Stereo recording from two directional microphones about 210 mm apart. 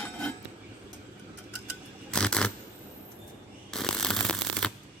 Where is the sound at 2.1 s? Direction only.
5° left (ahead or behind).